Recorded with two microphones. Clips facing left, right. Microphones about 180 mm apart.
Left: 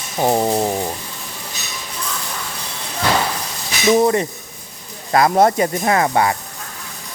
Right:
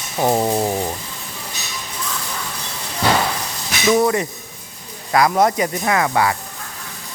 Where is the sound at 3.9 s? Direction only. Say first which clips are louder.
Left 2 dB; 25° left (ahead or behind).